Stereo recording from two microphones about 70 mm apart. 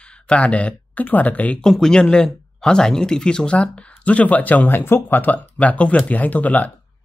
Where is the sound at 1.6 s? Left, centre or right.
Centre; by 6.7 s left.